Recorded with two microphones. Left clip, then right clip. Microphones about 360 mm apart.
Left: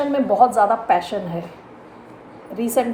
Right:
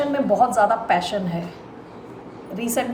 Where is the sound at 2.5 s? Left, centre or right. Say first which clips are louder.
Left 4 dB; centre.